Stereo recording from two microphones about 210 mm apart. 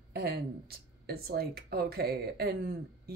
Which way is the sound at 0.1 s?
50° right (ahead or behind).